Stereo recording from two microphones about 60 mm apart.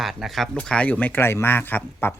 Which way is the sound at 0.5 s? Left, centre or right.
Centre.